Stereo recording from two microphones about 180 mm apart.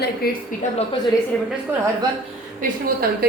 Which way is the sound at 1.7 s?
10° right (ahead or behind).